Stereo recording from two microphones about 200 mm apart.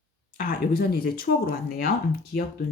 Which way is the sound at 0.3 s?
45° left (ahead or behind).